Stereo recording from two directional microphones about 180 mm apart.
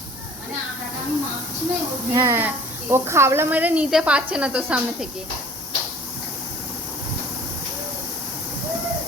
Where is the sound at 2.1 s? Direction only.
15° right (ahead or behind).